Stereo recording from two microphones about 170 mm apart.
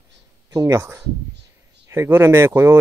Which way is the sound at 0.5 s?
20° right (ahead or behind).